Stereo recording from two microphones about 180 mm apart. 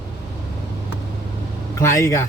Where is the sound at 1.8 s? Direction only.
15° left (ahead or behind).